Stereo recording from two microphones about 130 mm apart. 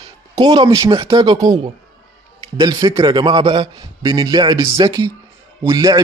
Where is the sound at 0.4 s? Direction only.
35° right (ahead or behind).